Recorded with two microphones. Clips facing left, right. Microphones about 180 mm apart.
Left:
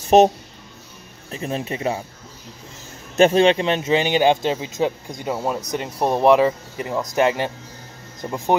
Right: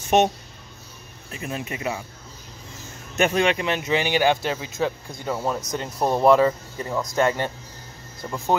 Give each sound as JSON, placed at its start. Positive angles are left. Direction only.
{"t": 0.1, "sound": "speech", "side_deg": 35}
{"t": 1.3, "sound": "speech", "side_deg": 30}
{"t": 3.2, "sound": "speech", "side_deg": 30}